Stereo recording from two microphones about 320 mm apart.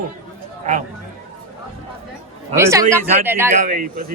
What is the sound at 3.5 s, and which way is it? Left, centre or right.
Speech, right.